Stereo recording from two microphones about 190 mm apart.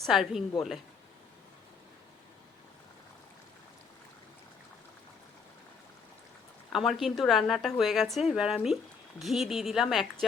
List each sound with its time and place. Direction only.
0.0 s a woman's voice: centre (ahead or behind)
6.7 s a woman's voice: centre (ahead or behind)